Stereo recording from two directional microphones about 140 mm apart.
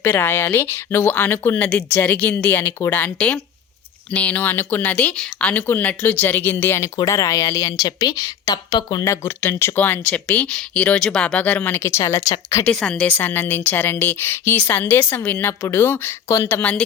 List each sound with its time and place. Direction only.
0.0 s speech: 15° left (ahead or behind)
9.2 s speech: 15° left (ahead or behind)
12.6 s speech: 5° left (ahead or behind)